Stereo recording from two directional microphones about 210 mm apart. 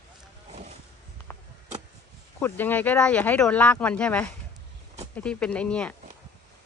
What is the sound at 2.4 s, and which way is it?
Speech, 10° left (ahead or behind).